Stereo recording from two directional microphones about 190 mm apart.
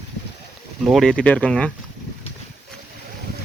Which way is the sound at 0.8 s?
Centre (ahead or behind).